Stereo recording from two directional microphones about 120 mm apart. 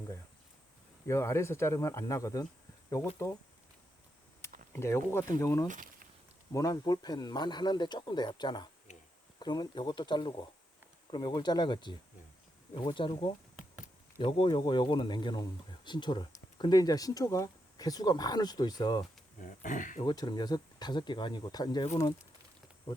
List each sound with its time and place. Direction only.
1.0 s speech: 25° left (ahead or behind)
4.4 s a sound: 20° left (ahead or behind)
5.3 s speech: 25° left (ahead or behind)
19.4 s speech: 90° left
20.1 s speech: 35° left (ahead or behind)